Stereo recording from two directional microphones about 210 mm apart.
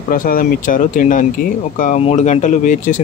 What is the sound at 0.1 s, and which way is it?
Speech, 40° left (ahead or behind).